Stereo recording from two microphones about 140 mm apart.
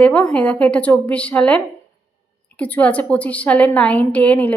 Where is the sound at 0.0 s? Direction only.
10° left (ahead or behind).